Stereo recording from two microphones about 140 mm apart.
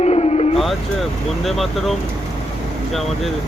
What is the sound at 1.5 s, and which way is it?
Speech, centre (ahead or behind).